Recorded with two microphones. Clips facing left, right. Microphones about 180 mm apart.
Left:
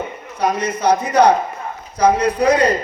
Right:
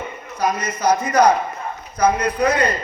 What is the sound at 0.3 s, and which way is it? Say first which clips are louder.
Speech: left 3 dB; 30° left (ahead or behind).